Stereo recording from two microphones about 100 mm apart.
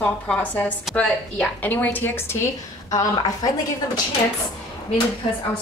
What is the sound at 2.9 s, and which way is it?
Speech, 40° left (ahead or behind).